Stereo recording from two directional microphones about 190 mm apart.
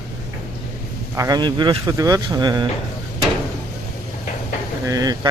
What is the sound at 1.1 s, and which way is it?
Speech, 20° right (ahead or behind).